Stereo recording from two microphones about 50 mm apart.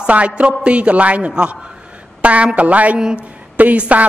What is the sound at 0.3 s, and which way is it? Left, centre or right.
A man's voice, right.